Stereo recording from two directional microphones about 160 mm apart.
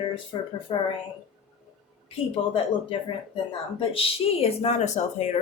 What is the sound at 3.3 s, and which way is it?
Speech, 35° left (ahead or behind).